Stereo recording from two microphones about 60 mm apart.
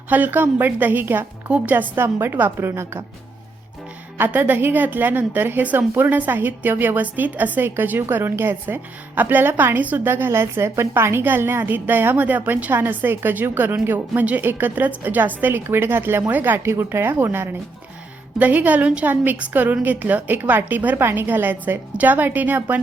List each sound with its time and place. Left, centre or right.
0.1 s a woman's voice: right
1.7 s a woman's voice: right
4.3 s a woman's voice: right
16.6 s speech: right
18.3 s a woman's voice: right